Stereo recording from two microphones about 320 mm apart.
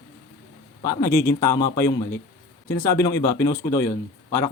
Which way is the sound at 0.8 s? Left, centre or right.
Centre.